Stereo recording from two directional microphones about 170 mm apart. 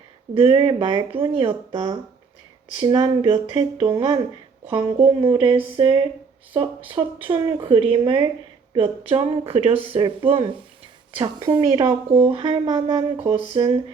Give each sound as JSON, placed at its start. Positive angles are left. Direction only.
{"t": 0.3, "sound": "speech", "side_deg": -35}
{"t": 13.5, "sound": "speech", "side_deg": -35}